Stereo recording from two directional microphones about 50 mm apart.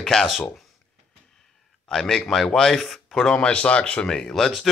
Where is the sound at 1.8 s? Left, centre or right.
Centre.